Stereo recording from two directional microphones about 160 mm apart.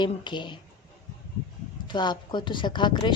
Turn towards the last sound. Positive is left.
turn(degrees=30)  # may be behind; listen again after turning